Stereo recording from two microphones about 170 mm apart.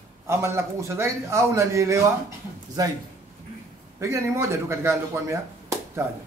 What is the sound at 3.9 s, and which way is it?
A man's voice, 15° right (ahead or behind).